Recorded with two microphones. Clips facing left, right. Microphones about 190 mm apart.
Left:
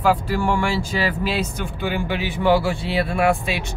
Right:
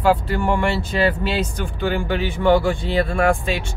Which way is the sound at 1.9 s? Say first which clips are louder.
Right 2 dB; 5° left (ahead or behind).